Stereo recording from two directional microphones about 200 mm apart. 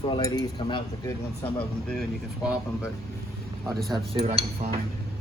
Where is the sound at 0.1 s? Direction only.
20° left (ahead or behind).